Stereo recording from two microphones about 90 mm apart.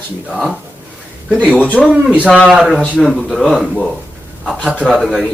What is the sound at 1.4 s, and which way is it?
Speech, 15° right (ahead or behind).